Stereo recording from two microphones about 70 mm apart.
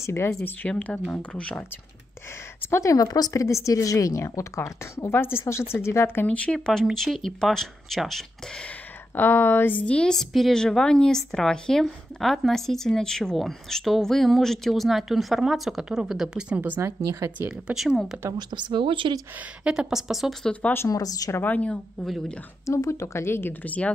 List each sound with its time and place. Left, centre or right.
0.0 s speech: left
0.4 s speech: centre
2.7 s speech: left
3.1 s speech: left
6.2 s a woman's voice: centre
9.1 s a woman's voice: left; by 16.8 s right
16.8 s speech: right
18.6 s speech: right
19.6 s speech: centre
20.9 s speech: left
21.3 s speech: left
22.0 s speech: centre
22.7 s speech: left
23.6 s speech: left